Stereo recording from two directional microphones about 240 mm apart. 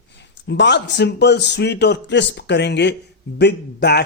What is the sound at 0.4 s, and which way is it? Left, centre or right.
Speech, left.